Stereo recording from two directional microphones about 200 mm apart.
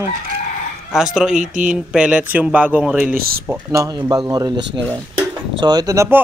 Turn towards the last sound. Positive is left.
turn(degrees=-15)  # may be behind; listen again after turning